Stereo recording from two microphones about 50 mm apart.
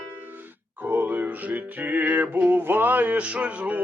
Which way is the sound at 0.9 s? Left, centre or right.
Right.